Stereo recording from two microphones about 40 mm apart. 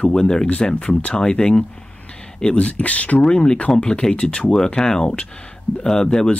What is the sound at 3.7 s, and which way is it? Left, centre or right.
Speech, centre.